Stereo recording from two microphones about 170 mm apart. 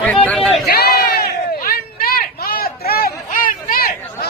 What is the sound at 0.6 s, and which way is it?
Crowd, 70° left (ahead or behind).